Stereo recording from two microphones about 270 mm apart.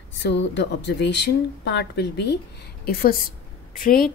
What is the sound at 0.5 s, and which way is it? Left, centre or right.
A woman's voice, left.